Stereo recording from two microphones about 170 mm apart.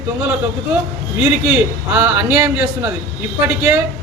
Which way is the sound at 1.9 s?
10° right (ahead or behind).